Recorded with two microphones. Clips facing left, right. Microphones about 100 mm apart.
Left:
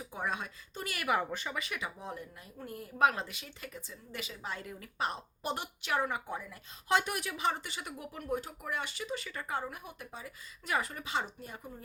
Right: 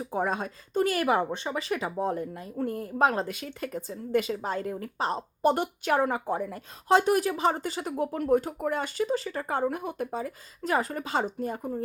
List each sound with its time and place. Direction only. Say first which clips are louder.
0.0 s a woman's voice: right 8 dB; 40° right (ahead or behind)
3.3 s a woman's voice: right 12 dB; 50° right (ahead or behind)
9.6 s speech: right 14 dB; 55° right (ahead or behind)